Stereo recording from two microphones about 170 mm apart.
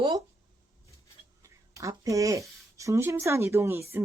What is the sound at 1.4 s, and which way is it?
Speech, 20° right (ahead or behind).